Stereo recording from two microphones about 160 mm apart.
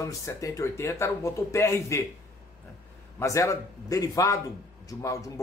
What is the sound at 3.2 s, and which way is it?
A man's voice, 20° left (ahead or behind).